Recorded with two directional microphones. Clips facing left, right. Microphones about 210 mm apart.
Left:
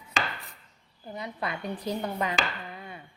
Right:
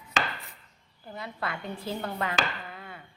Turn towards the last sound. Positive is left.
turn(degrees=20)  # may be behind; listen again after turning